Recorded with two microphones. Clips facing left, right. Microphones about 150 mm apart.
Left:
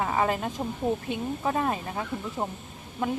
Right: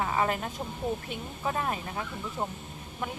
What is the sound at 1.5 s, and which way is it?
Speech, 30° left (ahead or behind).